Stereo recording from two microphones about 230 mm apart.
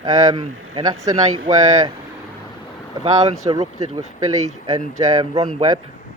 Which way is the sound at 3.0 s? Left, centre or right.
Centre.